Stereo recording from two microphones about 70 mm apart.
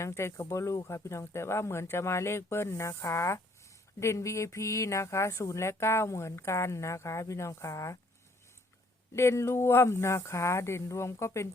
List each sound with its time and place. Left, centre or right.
0.0 s speech: left
9.1 s speech: left